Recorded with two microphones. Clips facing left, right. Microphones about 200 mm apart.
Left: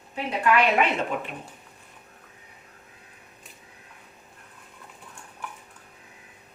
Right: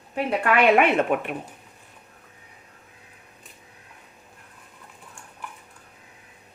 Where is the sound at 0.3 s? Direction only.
55° right (ahead or behind).